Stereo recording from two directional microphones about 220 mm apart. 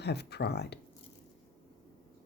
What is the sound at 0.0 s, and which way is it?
Speech, 50° left (ahead or behind).